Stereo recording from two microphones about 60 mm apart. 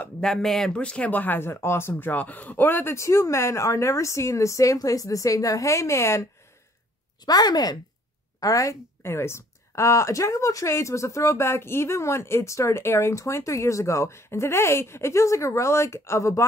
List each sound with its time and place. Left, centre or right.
0.2 s speech: centre
0.7 s speech: centre
1.1 s speech: left
1.5 s speech: left
7.2 s a woman's voice: left
8.4 s a woman's voice: left
9.0 s speech: left